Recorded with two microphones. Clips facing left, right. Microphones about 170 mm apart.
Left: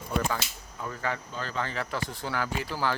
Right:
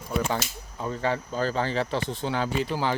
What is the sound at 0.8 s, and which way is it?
Speech, 25° right (ahead or behind).